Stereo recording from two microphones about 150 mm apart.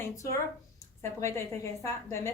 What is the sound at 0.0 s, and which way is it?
A woman's voice, 20° left (ahead or behind).